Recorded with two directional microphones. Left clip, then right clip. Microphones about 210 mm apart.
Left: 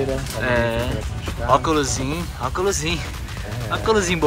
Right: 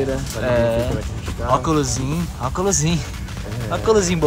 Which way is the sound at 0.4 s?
10° right (ahead or behind).